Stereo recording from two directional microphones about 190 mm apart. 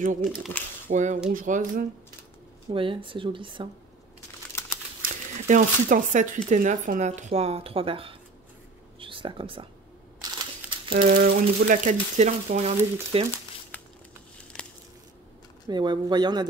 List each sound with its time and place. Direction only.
0.0 s speech: 40° right (ahead or behind)
2.7 s speech: 25° right (ahead or behind)
4.5 s typing: 10° left (ahead or behind)
5.0 s speech: 45° right (ahead or behind); by 9.7 s 30° right (ahead or behind)
10.2 s crumpling: 25° right (ahead or behind)
11.1 s speech: 50° right (ahead or behind); by 13.3 s 30° right (ahead or behind)
15.7 s speech: 25° right (ahead or behind)